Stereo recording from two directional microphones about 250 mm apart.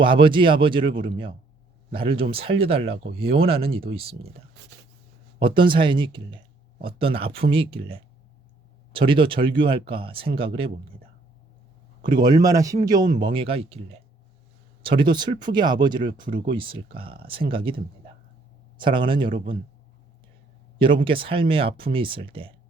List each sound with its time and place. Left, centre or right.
0.0 s speech: centre
5.4 s speech: centre
12.0 s speech: centre
14.8 s speech: centre
18.8 s speech: centre
20.7 s speech: centre